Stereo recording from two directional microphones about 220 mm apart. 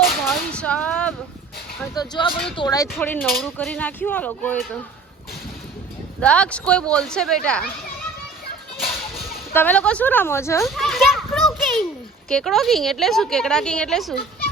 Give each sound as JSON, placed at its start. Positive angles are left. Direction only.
{"t": 0.3, "sound": "female singing", "side_deg": 5}
{"t": 2.0, "sound": "speech", "side_deg": 20}
{"t": 6.1, "sound": "a woman's voice", "side_deg": 5}
{"t": 9.5, "sound": "speech", "side_deg": 10}
{"t": 10.7, "sound": "children playing", "side_deg": 0}
{"t": 12.3, "sound": "a woman's voice", "side_deg": 0}